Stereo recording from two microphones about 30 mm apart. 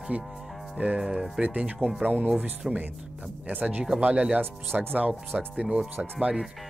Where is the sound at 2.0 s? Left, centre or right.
Right.